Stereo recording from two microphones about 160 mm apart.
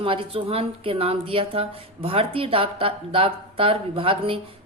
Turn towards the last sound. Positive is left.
turn(degrees=-35)  # may be behind; listen again after turning